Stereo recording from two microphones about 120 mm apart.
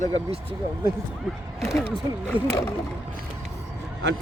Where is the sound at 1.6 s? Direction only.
20° left (ahead or behind).